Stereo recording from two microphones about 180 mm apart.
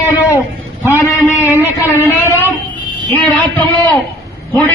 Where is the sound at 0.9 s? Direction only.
15° left (ahead or behind).